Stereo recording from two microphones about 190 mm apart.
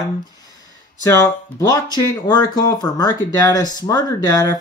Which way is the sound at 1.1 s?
20° left (ahead or behind).